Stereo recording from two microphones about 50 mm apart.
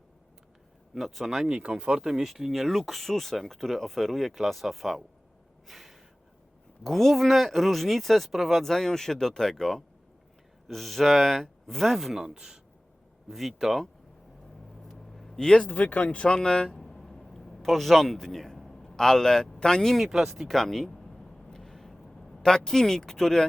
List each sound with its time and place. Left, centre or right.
0.9 s speech: centre
1.5 s speech: centre
5.6 s gasp: centre
6.8 s speech: centre
13.2 s speech: centre
14.8 s a sound: centre
15.4 s speech: centre
16.0 s speech: left
16.8 s a sound: centre
20.1 s a sound: centre